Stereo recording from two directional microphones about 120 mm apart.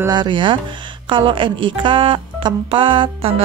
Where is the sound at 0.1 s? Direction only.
40° right (ahead or behind).